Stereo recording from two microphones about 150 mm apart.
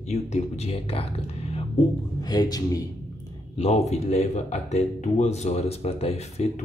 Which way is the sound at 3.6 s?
45° left (ahead or behind).